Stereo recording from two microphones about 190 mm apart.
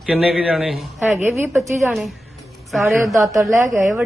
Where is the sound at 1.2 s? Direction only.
10° right (ahead or behind).